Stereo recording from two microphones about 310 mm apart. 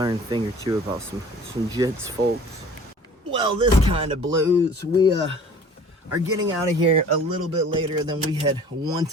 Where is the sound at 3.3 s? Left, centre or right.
Centre.